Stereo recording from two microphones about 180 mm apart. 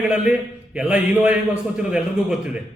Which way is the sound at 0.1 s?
5° right (ahead or behind).